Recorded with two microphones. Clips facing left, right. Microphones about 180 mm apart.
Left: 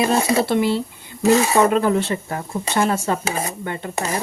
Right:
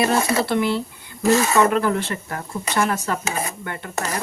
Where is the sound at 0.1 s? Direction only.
25° left (ahead or behind).